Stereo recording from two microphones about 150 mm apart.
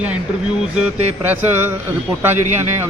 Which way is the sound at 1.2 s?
10° right (ahead or behind).